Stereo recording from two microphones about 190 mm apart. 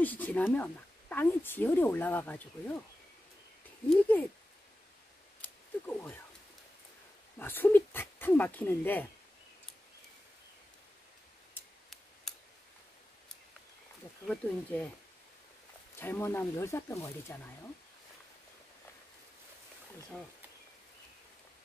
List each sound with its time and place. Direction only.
0.0 s speech: 10° left (ahead or behind)
3.9 s speech: 10° left (ahead or behind)
5.9 s speech: 10° left (ahead or behind)
7.3 s speech: 10° left (ahead or behind)
11.5 s scissors: centre (ahead or behind)
14.2 s speech: 5° left (ahead or behind)
16.0 s speech: 10° left (ahead or behind)